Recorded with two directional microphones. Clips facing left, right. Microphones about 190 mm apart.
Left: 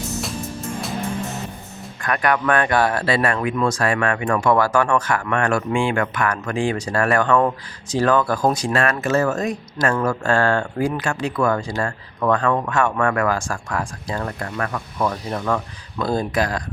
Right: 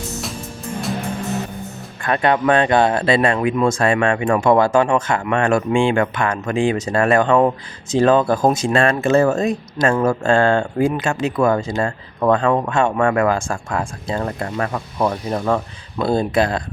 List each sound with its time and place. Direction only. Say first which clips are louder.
2.0 s speech: right 3 dB; 25° right (ahead or behind)